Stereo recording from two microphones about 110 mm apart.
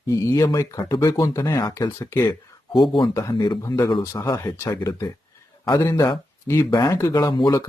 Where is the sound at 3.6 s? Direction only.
30° left (ahead or behind).